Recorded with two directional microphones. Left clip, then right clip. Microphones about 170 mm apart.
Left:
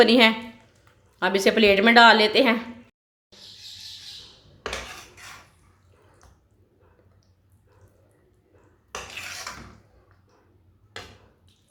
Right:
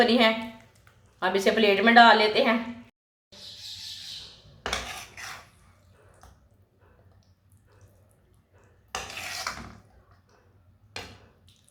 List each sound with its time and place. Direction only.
0.0 s a woman's voice: 65° left (ahead or behind)